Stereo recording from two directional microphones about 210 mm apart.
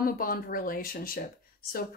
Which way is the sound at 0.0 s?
45° left (ahead or behind).